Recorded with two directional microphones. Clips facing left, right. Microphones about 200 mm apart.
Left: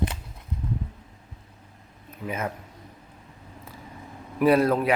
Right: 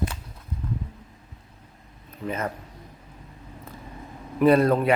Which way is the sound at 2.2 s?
10° left (ahead or behind).